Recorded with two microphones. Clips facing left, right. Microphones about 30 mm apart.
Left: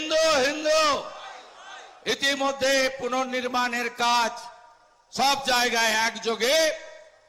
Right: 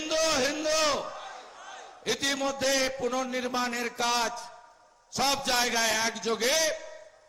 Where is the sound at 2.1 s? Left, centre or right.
Centre.